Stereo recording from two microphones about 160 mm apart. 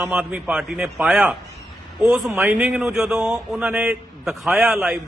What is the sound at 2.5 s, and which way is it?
A man's voice, 5° right (ahead or behind).